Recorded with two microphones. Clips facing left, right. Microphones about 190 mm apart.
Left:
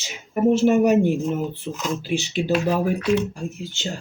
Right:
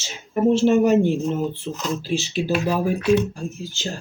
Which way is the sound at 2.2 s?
15° left (ahead or behind).